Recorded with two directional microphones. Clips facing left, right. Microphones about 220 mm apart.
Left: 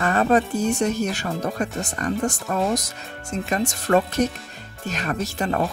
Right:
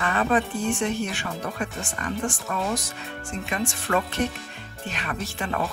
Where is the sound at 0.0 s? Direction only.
40° left (ahead or behind).